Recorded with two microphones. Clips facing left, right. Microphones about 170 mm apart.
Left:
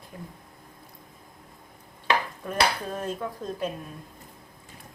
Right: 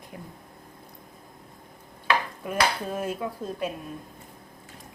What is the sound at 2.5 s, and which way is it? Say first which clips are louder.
Dishes: even; 10° right (ahead or behind).